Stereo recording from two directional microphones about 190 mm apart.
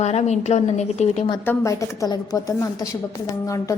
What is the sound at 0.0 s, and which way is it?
A woman's voice, 35° left (ahead or behind).